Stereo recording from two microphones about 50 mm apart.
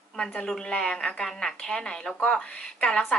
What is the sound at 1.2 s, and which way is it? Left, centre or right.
A woman's voice, centre.